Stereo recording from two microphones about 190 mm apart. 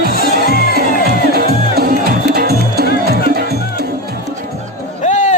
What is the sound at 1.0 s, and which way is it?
Music, 55° right (ahead or behind).